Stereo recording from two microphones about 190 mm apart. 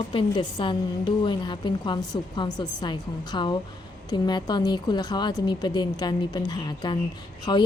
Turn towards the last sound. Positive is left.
turn(degrees=20)  # may be behind; listen again after turning